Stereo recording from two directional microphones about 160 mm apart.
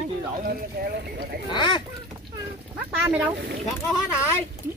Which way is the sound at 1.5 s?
30° left (ahead or behind).